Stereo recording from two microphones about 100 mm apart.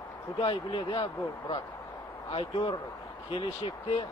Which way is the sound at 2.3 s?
65° left (ahead or behind).